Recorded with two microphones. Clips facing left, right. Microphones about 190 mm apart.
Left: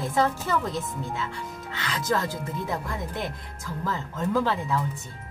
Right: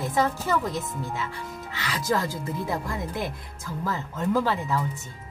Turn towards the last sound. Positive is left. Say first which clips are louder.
# right 1 dB
turn(degrees=-5)  # may be behind; listen again after turning